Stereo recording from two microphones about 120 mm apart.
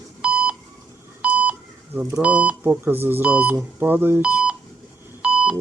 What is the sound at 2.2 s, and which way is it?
Speech, 10° right (ahead or behind).